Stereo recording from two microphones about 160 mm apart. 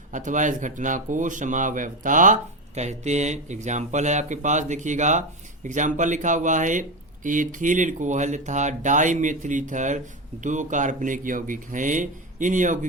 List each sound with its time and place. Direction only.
0.1 s speech: 50° right (ahead or behind)